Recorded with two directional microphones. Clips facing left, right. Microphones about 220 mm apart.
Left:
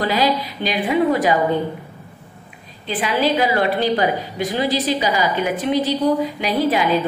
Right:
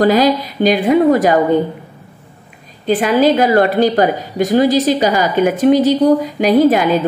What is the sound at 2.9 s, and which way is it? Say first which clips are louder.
A woman's voice: right 8 dB; 45° right (ahead or behind).